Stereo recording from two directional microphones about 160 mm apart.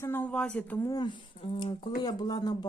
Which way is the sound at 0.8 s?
25° left (ahead or behind).